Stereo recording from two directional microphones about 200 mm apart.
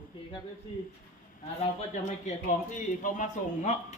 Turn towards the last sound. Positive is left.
turn(degrees=40)  # may be behind; listen again after turning